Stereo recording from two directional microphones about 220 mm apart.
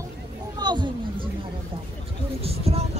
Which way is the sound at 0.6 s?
20° right (ahead or behind).